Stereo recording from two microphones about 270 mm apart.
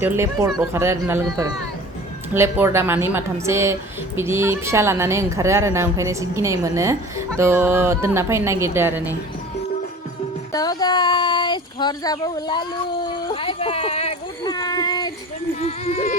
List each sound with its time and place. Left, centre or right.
0.0 s speech: centre
10.5 s speech: centre
15.6 s music: left